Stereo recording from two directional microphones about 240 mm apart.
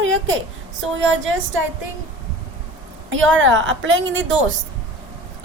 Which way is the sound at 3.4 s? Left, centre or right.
Right.